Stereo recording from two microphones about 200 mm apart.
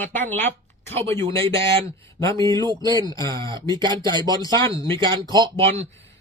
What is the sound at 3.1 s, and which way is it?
Speech, 20° left (ahead or behind).